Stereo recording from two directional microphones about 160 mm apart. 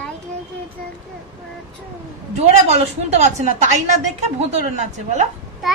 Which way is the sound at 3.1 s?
45° right (ahead or behind).